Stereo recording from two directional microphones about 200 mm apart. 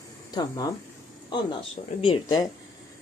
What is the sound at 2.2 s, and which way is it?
Speech, 20° left (ahead or behind).